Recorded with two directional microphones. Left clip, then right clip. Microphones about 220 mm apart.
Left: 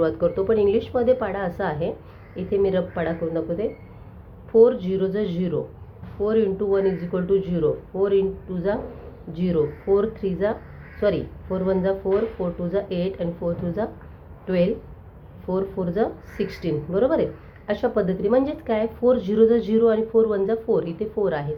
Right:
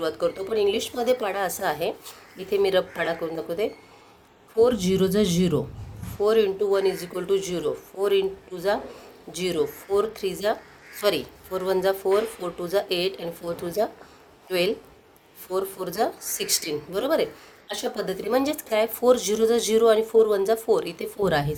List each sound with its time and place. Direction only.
0.0 s a woman's voice: 30° right (ahead or behind)
15.5 s a woman's voice: 45° right (ahead or behind)